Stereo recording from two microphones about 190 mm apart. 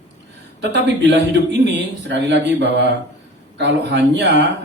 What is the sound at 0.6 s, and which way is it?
A man's voice, 65° right (ahead or behind).